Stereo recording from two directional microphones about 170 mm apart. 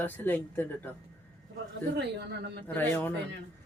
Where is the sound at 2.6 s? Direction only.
10° left (ahead or behind).